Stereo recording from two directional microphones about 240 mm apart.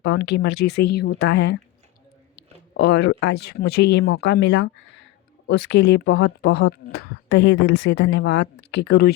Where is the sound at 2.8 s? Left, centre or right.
Left.